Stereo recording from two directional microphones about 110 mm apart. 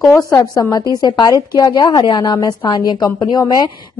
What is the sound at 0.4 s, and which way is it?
A woman's voice, 35° left (ahead or behind).